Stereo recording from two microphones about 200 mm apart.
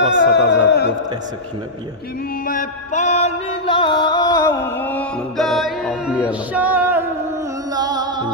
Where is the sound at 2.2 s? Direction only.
45° left (ahead or behind).